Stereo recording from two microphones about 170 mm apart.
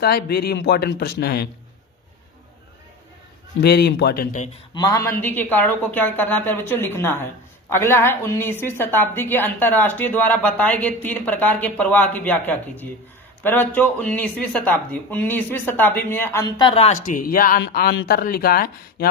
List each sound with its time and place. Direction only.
0.0 s speech: 65° left (ahead or behind)
3.6 s speech: 75° left (ahead or behind); by 4.4 s 55° left (ahead or behind)
4.7 s a woman's voice: 20° left (ahead or behind)
16.6 s speech: 35° left (ahead or behind); by 19.0 s 60° left (ahead or behind)